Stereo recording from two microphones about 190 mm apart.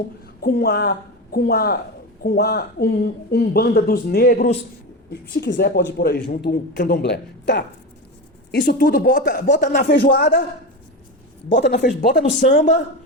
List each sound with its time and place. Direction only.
0.4 s a woman's voice: 55° left (ahead or behind)
8.6 s a woman's voice: 50° left (ahead or behind)
11.6 s a man's voice: 60° left (ahead or behind)
12.5 s speech: 40° left (ahead or behind)